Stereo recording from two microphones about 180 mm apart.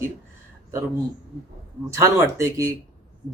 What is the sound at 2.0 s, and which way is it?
Speech, 15° right (ahead or behind).